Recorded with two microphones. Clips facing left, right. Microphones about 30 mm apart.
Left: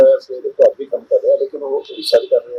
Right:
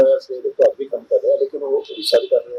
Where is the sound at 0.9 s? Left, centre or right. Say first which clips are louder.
Left 4 dB; centre.